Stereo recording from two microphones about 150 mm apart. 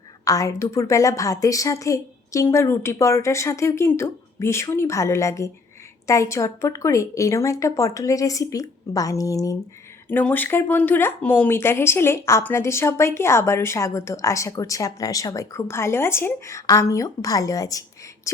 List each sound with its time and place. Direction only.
0.3 s a woman's voice: 20° left (ahead or behind)
10.1 s speech: 10° left (ahead or behind)